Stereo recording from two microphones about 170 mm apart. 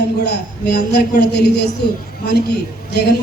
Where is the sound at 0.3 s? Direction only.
80° left.